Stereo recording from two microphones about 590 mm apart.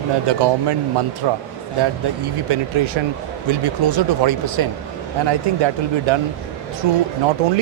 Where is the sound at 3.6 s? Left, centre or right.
Right.